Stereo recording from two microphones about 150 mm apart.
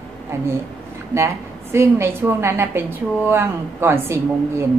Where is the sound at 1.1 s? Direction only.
20° right (ahead or behind).